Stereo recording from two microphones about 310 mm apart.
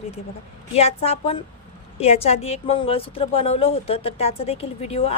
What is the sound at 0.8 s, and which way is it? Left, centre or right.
A woman's voice, centre.